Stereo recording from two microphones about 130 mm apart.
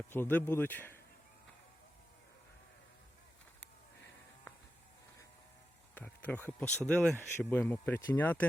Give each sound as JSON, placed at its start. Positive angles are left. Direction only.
{"t": 0.1, "sound": "speech", "side_deg": 15}
{"t": 5.9, "sound": "speech", "side_deg": 10}
{"t": 7.2, "sound": "speech", "side_deg": 15}